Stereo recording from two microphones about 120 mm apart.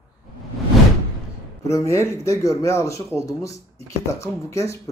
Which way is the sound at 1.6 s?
25° left (ahead or behind).